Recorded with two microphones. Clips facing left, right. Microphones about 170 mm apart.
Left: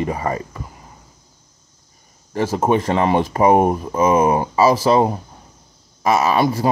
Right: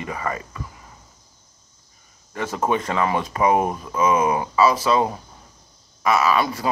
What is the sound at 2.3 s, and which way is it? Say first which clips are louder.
A man's voice: left 5 dB; 30° left (ahead or behind).